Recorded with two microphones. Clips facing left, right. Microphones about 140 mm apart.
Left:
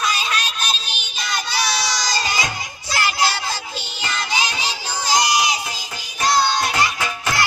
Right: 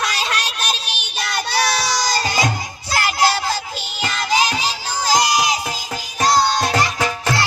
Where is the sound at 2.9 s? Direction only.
50° right (ahead or behind).